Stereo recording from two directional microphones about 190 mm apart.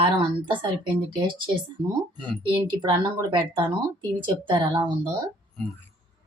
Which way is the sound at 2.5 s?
25° right (ahead or behind).